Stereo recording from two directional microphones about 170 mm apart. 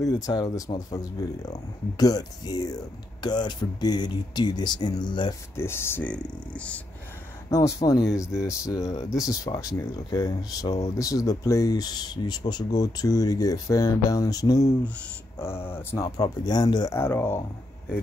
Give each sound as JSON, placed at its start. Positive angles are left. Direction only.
{"t": 0.0, "sound": "speech", "side_deg": 20}
{"t": 2.0, "sound": "speech", "side_deg": 20}
{"t": 5.6, "sound": "speech", "side_deg": 15}
{"t": 7.4, "sound": "speech", "side_deg": 20}